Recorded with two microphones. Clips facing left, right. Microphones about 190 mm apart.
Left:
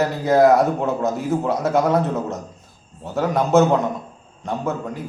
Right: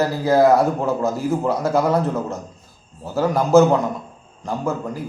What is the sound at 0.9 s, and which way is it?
Speech, 20° left (ahead or behind).